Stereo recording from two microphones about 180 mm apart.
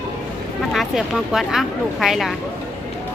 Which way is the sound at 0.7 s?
Centre (ahead or behind).